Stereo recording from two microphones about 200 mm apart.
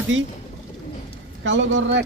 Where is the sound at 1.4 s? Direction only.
70° right (ahead or behind).